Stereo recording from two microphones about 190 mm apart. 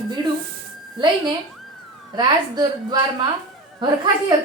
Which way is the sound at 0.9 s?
25° right (ahead or behind).